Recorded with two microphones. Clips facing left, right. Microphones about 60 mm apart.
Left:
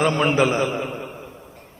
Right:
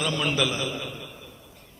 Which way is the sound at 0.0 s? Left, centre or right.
Left.